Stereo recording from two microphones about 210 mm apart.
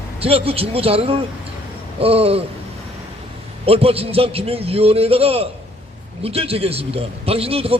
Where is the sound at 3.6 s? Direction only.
30° right (ahead or behind).